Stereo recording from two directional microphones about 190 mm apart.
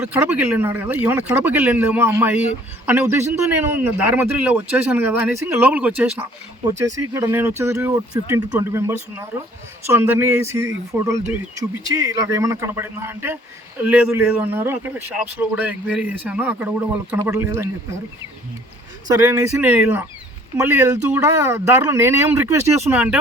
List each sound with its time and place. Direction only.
0.0 s speech: 10° right (ahead or behind)
19.0 s speech: 15° right (ahead or behind)